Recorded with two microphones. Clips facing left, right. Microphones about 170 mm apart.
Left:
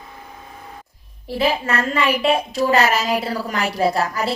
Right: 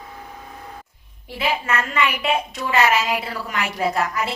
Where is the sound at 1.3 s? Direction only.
35° left (ahead or behind).